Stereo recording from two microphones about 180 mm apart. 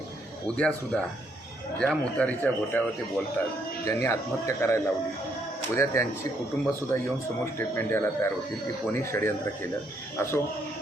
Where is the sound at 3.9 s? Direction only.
15° left (ahead or behind).